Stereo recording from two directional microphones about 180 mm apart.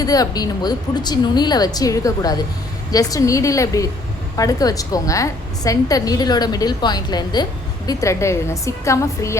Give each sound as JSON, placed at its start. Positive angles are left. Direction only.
{"t": 0.0, "sound": "a woman's voice", "side_deg": 20}